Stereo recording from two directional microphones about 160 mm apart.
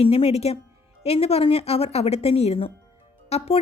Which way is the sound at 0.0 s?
40° left (ahead or behind).